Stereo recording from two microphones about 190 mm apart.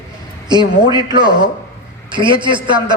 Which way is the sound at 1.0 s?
25° right (ahead or behind).